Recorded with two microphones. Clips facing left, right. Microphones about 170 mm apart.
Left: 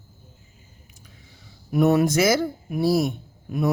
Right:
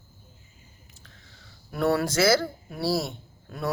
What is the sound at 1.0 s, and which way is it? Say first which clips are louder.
Speech: left 4 dB; 10° left (ahead or behind).